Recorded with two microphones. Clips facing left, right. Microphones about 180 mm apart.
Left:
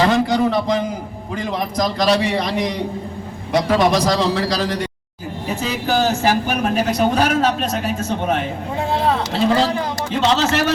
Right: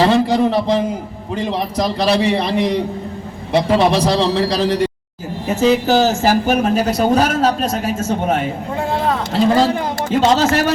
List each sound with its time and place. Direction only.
0.0 s speech: 30° right (ahead or behind)
5.5 s speech: 40° right (ahead or behind)
10.1 s speech: 45° right (ahead or behind)